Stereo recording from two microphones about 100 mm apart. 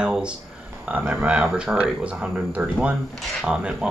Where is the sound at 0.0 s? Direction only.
10° right (ahead or behind).